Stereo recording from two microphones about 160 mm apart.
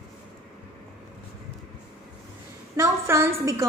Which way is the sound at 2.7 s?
15° right (ahead or behind).